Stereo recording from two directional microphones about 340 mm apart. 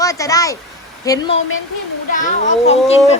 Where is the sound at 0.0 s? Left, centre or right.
Centre.